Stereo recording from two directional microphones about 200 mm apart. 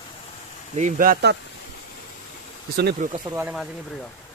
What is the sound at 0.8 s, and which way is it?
Speech, 40° right (ahead or behind).